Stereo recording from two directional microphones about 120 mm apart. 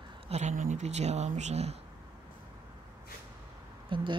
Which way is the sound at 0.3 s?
75° right (ahead or behind).